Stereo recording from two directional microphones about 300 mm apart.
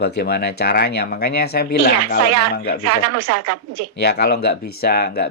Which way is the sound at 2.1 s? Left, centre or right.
Right.